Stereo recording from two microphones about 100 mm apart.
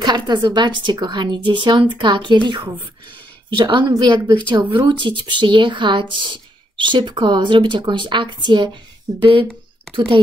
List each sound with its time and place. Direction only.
0.0 s speech: 45° right (ahead or behind)
3.9 s speech: 40° right (ahead or behind)
9.2 s speech: 60° right (ahead or behind)